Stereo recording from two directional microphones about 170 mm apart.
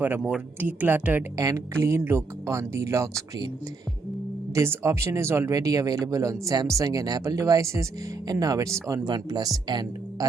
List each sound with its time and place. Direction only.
0.0 s speech: 5° right (ahead or behind)
4.5 s speech: 15° right (ahead or behind)